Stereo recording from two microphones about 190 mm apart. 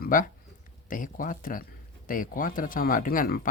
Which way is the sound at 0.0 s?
45° left (ahead or behind).